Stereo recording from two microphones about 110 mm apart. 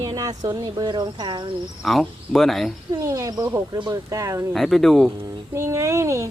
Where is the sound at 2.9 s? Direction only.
30° right (ahead or behind).